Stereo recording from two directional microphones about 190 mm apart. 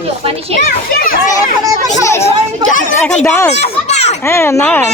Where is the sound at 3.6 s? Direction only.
35° left (ahead or behind).